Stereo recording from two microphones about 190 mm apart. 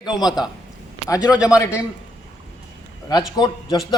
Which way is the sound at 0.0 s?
20° left (ahead or behind).